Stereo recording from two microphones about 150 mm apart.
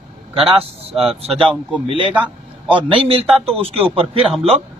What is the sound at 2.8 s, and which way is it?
Speech, 35° right (ahead or behind).